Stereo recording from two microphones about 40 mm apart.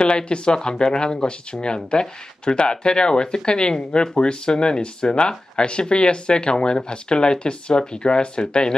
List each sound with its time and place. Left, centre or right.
0.0 s speech: left